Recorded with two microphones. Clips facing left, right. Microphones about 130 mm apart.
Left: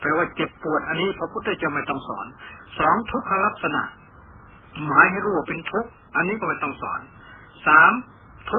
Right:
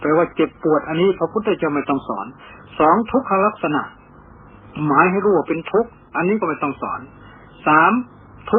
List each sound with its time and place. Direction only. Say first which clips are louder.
0.1 s a man's voice: right 8 dB; 40° right (ahead or behind)
4.7 s a woman's voice: right 8 dB; 45° right (ahead or behind)
4.9 s a man's voice: right 5 dB; 30° right (ahead or behind)